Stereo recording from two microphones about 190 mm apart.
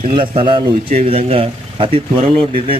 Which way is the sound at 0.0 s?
25° right (ahead or behind).